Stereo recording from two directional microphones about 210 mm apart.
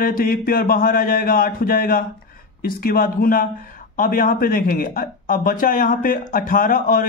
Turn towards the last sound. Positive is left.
turn(degrees=40)  # may be behind; listen again after turning